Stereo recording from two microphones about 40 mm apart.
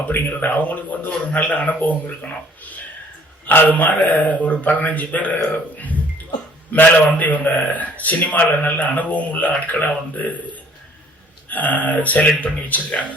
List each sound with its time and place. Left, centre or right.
0.1 s a man's voice: left
3.4 s a man's voice: left
3.7 s a man's voice: left
11.4 s a man's voice: left